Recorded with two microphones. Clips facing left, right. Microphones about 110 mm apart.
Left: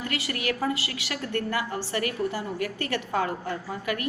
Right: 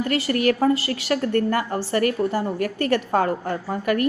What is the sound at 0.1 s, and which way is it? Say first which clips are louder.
A woman's voice: right 11 dB; 40° right (ahead or behind).